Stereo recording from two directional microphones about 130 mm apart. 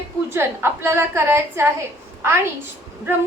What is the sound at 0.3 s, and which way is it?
A woman's voice, 20° right (ahead or behind).